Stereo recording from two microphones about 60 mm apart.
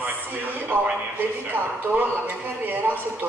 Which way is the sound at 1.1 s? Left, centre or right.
Right.